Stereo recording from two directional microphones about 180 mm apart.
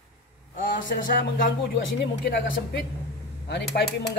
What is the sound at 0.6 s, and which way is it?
Speech, 50° left (ahead or behind).